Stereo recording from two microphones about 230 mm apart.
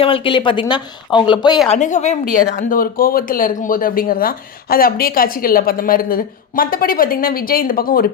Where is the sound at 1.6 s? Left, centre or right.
Left.